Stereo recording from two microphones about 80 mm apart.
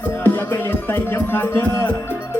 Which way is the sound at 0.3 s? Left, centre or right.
Left.